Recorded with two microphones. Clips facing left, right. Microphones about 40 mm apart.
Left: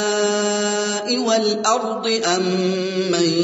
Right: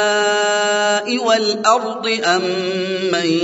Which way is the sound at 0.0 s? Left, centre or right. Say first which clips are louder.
Right 4 dB; right.